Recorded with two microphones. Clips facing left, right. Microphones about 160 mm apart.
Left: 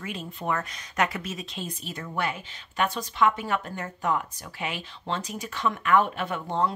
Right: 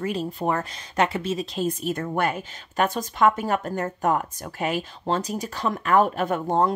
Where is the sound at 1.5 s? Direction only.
45° right (ahead or behind).